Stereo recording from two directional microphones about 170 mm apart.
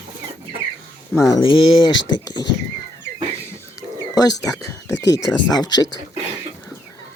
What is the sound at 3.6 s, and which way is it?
Bird, 20° left (ahead or behind).